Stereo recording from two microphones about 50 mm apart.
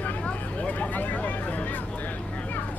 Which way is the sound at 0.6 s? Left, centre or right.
Left.